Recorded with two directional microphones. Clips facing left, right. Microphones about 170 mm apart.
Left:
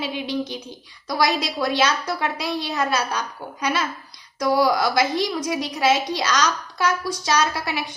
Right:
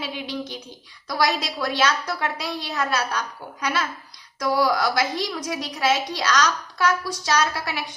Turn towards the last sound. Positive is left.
turn(degrees=20)  # may be behind; listen again after turning